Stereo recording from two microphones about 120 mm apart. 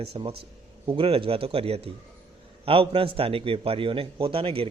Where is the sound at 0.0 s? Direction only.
50° right (ahead or behind).